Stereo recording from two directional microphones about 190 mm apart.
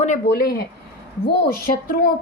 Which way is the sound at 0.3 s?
55° left (ahead or behind).